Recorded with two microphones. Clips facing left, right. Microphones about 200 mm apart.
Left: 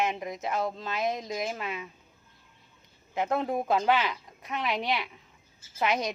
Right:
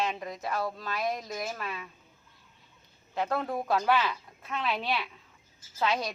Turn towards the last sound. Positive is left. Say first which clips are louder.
# left 1 dB
turn(degrees=20)  # may be behind; listen again after turning